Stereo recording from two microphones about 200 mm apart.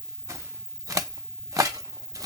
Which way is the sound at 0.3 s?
15° right (ahead or behind).